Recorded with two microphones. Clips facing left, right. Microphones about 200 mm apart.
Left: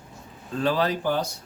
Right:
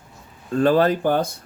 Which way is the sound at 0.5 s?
50° right (ahead or behind).